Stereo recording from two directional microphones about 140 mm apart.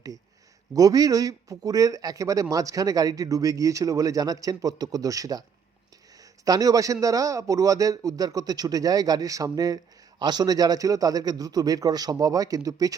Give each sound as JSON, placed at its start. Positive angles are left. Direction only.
{"t": 0.7, "sound": "a man's voice", "side_deg": -25}